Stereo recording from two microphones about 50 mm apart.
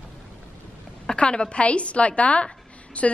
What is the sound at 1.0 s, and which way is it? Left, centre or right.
A woman's voice, centre.